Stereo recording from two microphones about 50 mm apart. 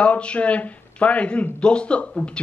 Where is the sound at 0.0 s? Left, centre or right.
Left.